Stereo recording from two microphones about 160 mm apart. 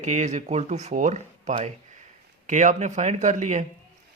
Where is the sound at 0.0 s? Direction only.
50° right (ahead or behind).